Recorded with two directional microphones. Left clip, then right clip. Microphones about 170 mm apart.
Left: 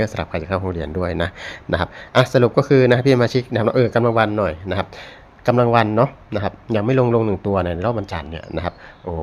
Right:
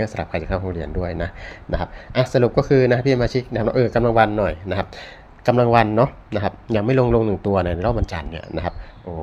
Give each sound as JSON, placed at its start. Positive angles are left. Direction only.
{"t": 0.0, "sound": "a man's voice", "side_deg": 10}
{"t": 9.1, "sound": "speech", "side_deg": 25}